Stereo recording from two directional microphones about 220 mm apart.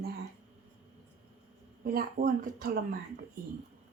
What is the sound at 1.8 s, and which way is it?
Speech, 40° right (ahead or behind).